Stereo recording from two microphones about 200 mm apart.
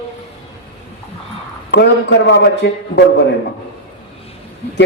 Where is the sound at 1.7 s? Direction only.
60° left (ahead or behind).